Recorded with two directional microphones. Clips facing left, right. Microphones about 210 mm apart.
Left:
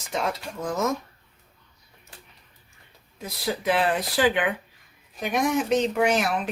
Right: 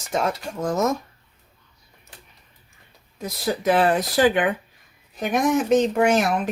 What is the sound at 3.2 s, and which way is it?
Speech, 45° right (ahead or behind).